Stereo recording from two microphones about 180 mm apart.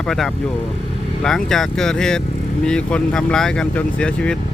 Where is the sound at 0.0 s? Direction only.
5° left (ahead or behind).